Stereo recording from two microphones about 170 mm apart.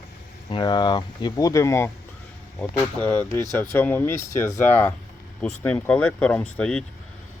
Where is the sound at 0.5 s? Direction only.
25° left (ahead or behind); by 6.8 s 5° left (ahead or behind).